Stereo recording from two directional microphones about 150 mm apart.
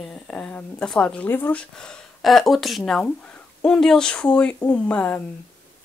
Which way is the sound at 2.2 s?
Centre (ahead or behind).